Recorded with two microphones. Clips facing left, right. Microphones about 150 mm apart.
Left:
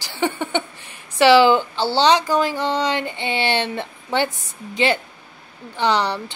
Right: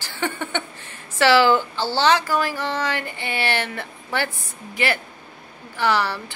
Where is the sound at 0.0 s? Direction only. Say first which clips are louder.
Left 4 dB; 15° left (ahead or behind).